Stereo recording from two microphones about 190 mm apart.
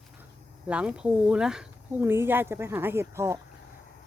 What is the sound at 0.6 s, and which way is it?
Speech, 5° right (ahead or behind).